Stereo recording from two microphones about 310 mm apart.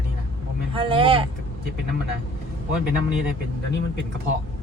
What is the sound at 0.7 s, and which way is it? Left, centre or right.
Speech, centre.